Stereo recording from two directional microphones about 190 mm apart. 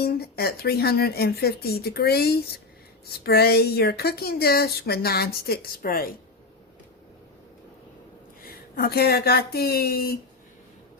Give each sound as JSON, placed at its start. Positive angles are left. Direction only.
{"t": 0.0, "sound": "speech", "side_deg": 55}
{"t": 8.4, "sound": "speech", "side_deg": 55}